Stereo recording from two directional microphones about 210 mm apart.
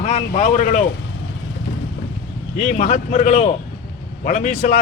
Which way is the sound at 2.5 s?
35° left (ahead or behind).